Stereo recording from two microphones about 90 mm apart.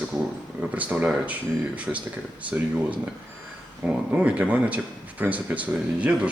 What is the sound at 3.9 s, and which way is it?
Speech, 15° right (ahead or behind).